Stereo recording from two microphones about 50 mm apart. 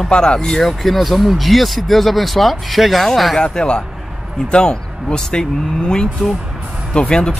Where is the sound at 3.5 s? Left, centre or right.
Centre.